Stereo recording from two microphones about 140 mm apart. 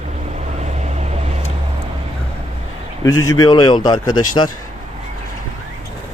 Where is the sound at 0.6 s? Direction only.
50° right (ahead or behind).